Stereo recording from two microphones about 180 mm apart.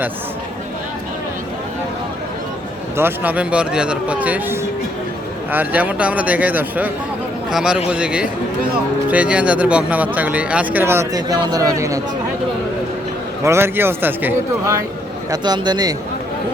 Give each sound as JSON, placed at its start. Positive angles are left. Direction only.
{"t": 3.0, "sound": "a man's voice", "side_deg": -10}
{"t": 13.4, "sound": "speech", "side_deg": -15}